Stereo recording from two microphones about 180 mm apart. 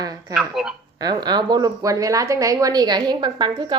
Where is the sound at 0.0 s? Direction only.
20° right (ahead or behind).